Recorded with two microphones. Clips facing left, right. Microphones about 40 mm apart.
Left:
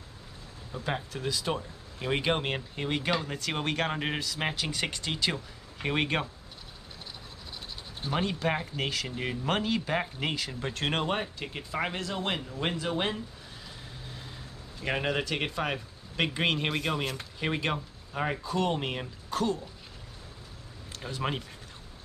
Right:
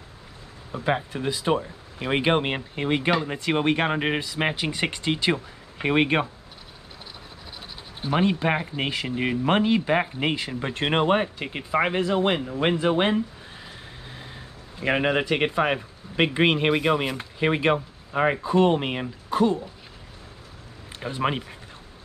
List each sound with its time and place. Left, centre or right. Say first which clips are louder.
0.7 s speech: right 8 dB; right
8.0 s speech: right 7 dB; right
21.0 s speech: right 7 dB; right